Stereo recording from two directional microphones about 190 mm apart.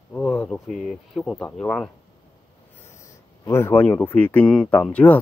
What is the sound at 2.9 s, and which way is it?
Speech, 15° left (ahead or behind).